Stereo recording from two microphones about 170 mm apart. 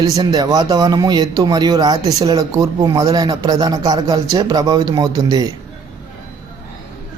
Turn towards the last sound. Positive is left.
turn(degrees=-20)  # may be behind; listen again after turning